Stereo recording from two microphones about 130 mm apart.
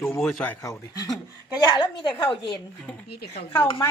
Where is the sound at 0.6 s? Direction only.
25° left (ahead or behind).